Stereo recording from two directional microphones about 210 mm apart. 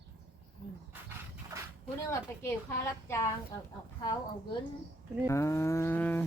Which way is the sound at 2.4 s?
10° left (ahead or behind).